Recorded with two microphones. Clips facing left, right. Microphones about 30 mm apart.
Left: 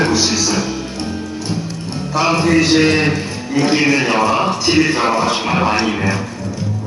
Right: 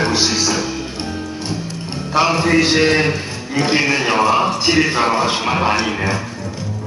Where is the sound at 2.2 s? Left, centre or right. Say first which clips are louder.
Left 1 dB; centre.